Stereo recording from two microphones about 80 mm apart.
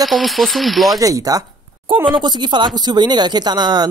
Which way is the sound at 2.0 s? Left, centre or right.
Right.